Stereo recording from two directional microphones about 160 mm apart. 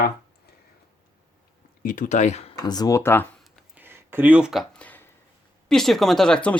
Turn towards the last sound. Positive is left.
turn(degrees=5)  # may be behind; listen again after turning